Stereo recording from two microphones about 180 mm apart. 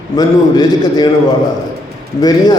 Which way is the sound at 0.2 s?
25° left (ahead or behind).